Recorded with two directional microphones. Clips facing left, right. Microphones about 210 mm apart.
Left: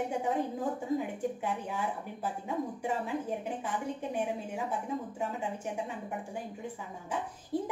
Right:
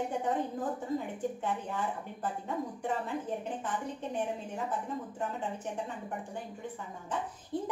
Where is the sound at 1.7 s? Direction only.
10° left (ahead or behind).